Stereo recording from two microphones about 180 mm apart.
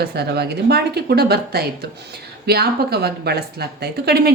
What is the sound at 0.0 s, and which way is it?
A woman's voice, 65° right (ahead or behind).